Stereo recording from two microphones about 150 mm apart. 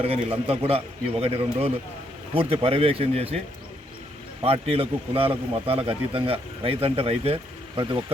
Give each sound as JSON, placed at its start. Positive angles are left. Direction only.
{"t": 0.0, "sound": "a man's voice", "side_deg": -40}
{"t": 4.4, "sound": "a man's voice", "side_deg": -40}